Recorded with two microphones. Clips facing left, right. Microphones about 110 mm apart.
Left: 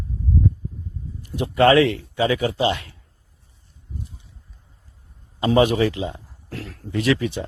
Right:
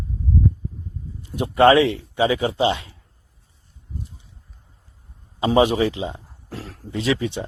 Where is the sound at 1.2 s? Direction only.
25° right (ahead or behind).